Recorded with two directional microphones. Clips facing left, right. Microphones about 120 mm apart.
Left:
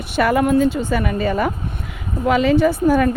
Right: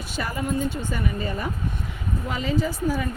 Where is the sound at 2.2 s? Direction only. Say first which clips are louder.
Left 12 dB; 75° left (ahead or behind).